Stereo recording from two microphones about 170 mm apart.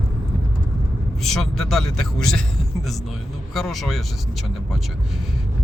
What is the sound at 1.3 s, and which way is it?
Speech, centre (ahead or behind).